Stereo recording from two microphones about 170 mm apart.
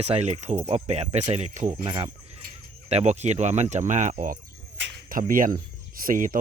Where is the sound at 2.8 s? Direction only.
40° right (ahead or behind).